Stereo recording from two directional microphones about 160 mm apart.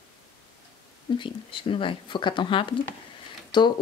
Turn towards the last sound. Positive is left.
turn(degrees=30)  # may be behind; listen again after turning